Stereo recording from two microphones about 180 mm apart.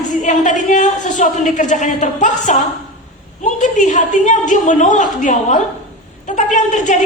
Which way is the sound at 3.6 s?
45° left (ahead or behind).